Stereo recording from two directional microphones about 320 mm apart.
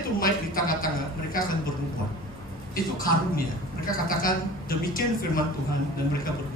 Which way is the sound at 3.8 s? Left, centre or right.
Left.